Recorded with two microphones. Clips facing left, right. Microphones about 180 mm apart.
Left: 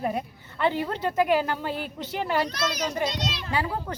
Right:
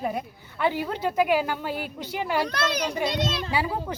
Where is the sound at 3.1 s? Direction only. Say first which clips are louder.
Right 4 dB; 55° right (ahead or behind).